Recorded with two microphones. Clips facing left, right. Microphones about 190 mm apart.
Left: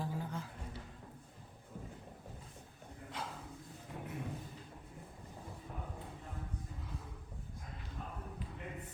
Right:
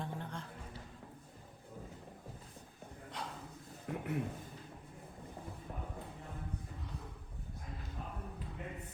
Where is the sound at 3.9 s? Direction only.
65° right (ahead or behind).